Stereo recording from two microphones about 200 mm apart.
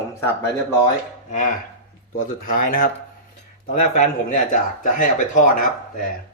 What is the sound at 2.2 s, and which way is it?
Speech, 45° left (ahead or behind).